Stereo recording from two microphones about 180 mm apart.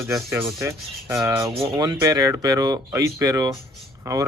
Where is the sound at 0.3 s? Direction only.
15° right (ahead or behind).